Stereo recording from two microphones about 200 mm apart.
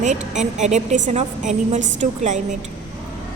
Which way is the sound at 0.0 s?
35° right (ahead or behind).